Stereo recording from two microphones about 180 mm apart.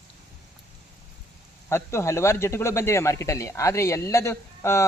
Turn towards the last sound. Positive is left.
turn(degrees=15)  # may be behind; listen again after turning